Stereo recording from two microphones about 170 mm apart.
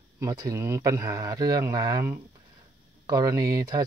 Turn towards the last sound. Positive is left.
turn(degrees=-20)  # may be behind; listen again after turning